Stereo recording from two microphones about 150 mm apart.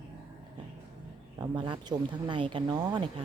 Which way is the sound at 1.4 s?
30° right (ahead or behind).